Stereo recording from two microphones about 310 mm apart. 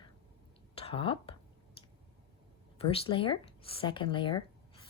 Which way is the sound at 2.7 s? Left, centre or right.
Centre.